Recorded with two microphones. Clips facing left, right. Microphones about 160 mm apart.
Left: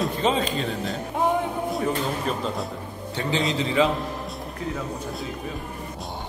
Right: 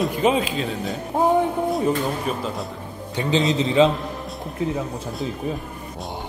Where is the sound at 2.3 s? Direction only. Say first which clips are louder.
Right 1 dB; 10° right (ahead or behind).